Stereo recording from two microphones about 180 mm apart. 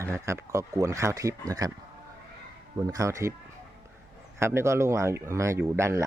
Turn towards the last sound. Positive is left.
turn(degrees=-15)  # may be behind; listen again after turning